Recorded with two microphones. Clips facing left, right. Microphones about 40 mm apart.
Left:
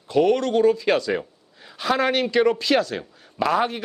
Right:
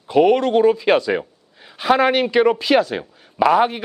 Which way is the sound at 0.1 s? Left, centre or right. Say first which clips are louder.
Right 4 dB; centre.